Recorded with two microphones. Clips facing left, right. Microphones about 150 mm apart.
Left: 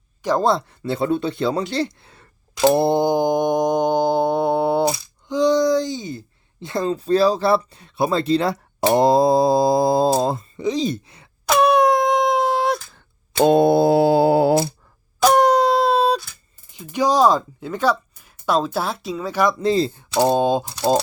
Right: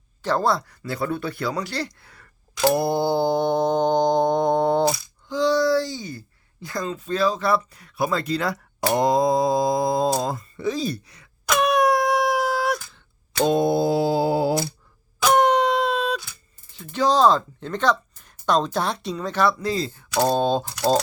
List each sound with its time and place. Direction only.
0.2 s speech: 15° left (ahead or behind)
4.9 s speech: 20° left (ahead or behind)
10.6 s groan: 20° left (ahead or behind)
13.4 s mantra: 60° left (ahead or behind)
15.2 s wail: 40° left (ahead or behind)
16.7 s speech: 15° left (ahead or behind)
19.5 s speech: 25° left (ahead or behind)
20.1 s speech: 15° left (ahead or behind)